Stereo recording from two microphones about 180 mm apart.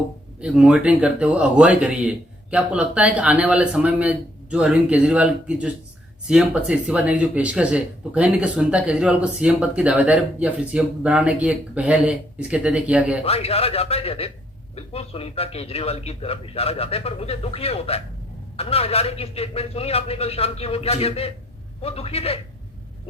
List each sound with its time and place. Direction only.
0.3 s speech: 5° right (ahead or behind)
13.2 s speech: 35° left (ahead or behind)